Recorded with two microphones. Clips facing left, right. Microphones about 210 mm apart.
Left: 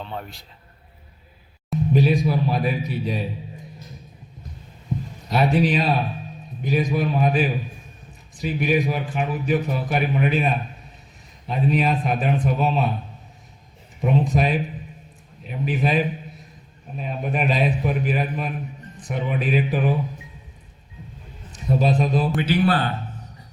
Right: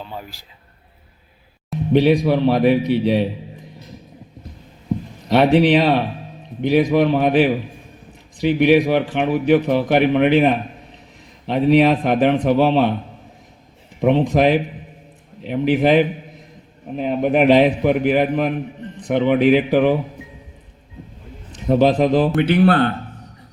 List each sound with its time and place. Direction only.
0.0 s a man's voice: 5° right (ahead or behind)
1.9 s a man's voice: 75° right (ahead or behind)
5.3 s a man's voice: 75° right (ahead or behind)
14.0 s a man's voice: 80° right
21.7 s a man's voice: 75° right (ahead or behind)
22.4 s speech: 60° right (ahead or behind)